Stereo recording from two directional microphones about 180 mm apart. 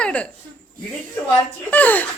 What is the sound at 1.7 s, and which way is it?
Speech, 10° left (ahead or behind).